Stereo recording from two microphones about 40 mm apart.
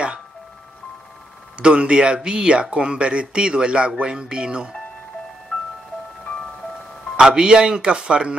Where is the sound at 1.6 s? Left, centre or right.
Right.